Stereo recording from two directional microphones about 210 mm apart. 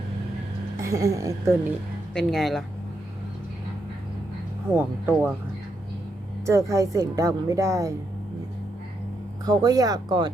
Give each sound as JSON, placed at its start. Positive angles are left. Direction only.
{"t": 0.8, "sound": "a woman's voice", "side_deg": -15}
{"t": 2.1, "sound": "speech", "side_deg": 0}
{"t": 4.7, "sound": "a woman's voice", "side_deg": -10}
{"t": 6.4, "sound": "a woman's voice", "side_deg": -15}
{"t": 9.5, "sound": "a woman's voice", "side_deg": -20}